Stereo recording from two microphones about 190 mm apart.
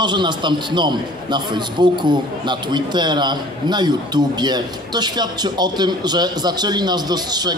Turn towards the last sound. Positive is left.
turn(degrees=-20)  # may be behind; listen again after turning